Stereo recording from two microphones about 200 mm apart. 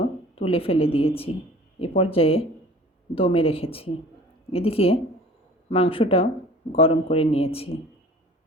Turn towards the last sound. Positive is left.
turn(degrees=30)  # may be behind; listen again after turning